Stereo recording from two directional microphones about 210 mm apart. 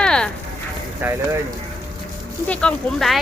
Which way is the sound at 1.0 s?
10° right (ahead or behind).